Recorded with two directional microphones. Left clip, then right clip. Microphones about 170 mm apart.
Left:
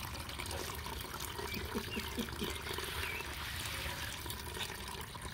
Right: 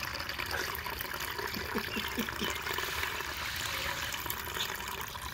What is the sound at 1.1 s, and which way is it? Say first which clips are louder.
Water: right 5 dB; 35° left (ahead or behind).